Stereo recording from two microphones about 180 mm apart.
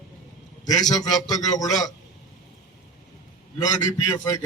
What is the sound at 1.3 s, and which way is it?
Speech, 20° left (ahead or behind).